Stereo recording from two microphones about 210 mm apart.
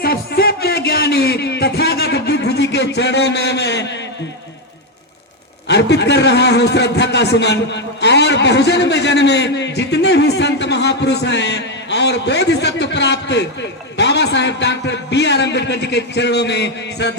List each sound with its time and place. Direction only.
0.0 s music: 50° left (ahead or behind)
5.6 s a man's voice: 55° left (ahead or behind)